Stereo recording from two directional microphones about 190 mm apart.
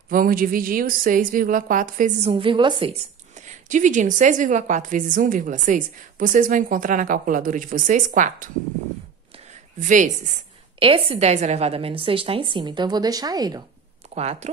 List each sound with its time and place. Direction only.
0.1 s a woman's voice: 50° right (ahead or behind); by 3.0 s 25° right (ahead or behind)
3.3 s a woman's voice: 40° right (ahead or behind)
9.5 s speech: 40° right (ahead or behind)
10.8 s a woman's voice: 30° right (ahead or behind)
14.1 s speech: 35° right (ahead or behind)